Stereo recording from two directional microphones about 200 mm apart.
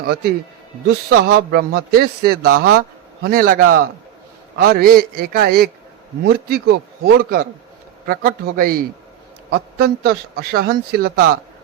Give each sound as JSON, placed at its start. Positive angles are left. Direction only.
{"t": 0.0, "sound": "a man's voice", "side_deg": -50}